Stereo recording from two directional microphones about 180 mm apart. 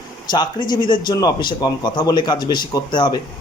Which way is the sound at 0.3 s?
25° left (ahead or behind).